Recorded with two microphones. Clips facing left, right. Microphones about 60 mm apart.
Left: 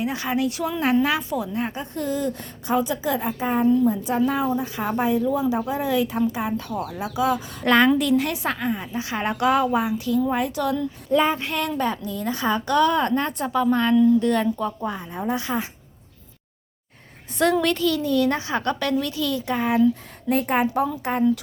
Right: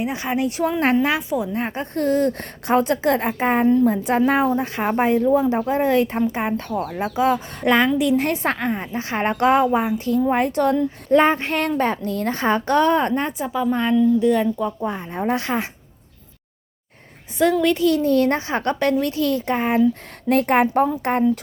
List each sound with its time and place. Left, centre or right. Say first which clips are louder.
0.0 s speech: right 1 dB; right
1.6 s a woman's voice: right 5 dB; right
7.6 s speech: even; centre
8.1 s a woman's voice: right 2 dB; right
12.0 s a woman's voice: right 4 dB; right
13.4 s speech: left 3 dB; centre
15.1 s a woman's voice: right 4 dB; right
17.3 s a woman's voice: right 3 dB; centre
17.7 s speech: right 5 dB; right
18.1 s a woman's voice: right 3 dB; right
20.2 s a woman's voice: right 4 dB; right